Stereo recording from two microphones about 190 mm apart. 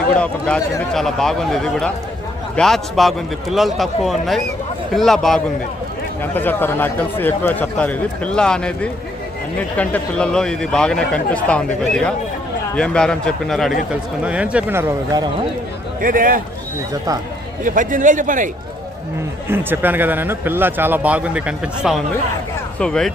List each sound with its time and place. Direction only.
0.1 s speech: 5° left (ahead or behind); by 15.3 s 15° right (ahead or behind)
16.0 s a man's voice: 45° right (ahead or behind)
17.6 s a man's voice: 45° right (ahead or behind)
19.5 s speech: 10° right (ahead or behind)